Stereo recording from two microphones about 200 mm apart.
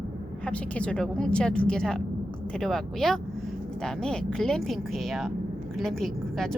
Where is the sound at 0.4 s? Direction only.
5° left (ahead or behind).